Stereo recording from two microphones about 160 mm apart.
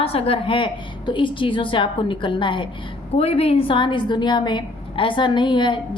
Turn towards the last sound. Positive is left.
turn(degrees=30)  # may be behind; listen again after turning